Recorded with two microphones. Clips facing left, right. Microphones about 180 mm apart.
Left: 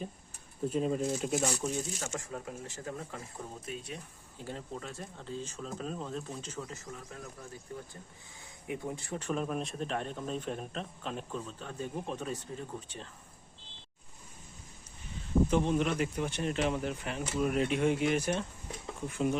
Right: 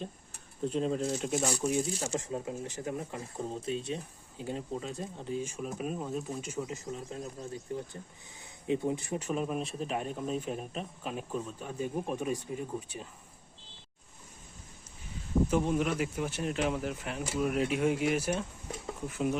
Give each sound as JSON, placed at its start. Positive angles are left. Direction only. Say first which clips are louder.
{"t": 0.6, "sound": "speech", "louder": "even", "side_deg": 5}
{"t": 1.5, "sound": "speech", "louder": "right 4 dB", "side_deg": -10}
{"t": 1.9, "sound": "speech", "louder": "right 4 dB", "side_deg": -35}
{"t": 2.1, "sound": "speech", "louder": "right 5 dB", "side_deg": -20}
{"t": 15.4, "sound": "speech", "louder": "right 1 dB", "side_deg": -5}